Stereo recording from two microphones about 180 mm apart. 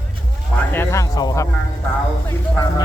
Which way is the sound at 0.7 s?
15° left (ahead or behind).